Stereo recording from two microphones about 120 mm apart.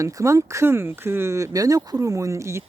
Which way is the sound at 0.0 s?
25° right (ahead or behind).